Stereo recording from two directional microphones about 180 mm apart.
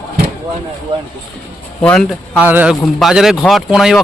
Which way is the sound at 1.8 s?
5° left (ahead or behind).